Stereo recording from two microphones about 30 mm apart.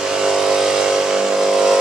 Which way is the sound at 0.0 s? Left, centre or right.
Centre.